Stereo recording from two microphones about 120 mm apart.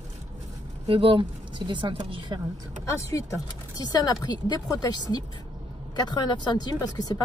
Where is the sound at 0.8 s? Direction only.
45° right (ahead or behind).